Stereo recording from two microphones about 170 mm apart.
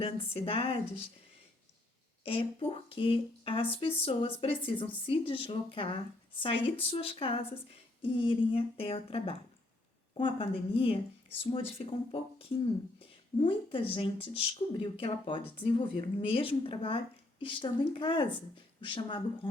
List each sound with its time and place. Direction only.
0.0 s speech: 35° left (ahead or behind)
2.2 s speech: 30° left (ahead or behind)